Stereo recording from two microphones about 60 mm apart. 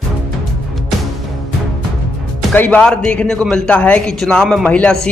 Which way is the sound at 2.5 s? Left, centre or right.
Left.